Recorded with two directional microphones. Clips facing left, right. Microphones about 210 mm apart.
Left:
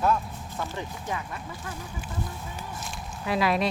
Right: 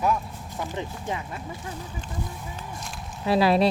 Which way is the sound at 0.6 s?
20° right (ahead or behind).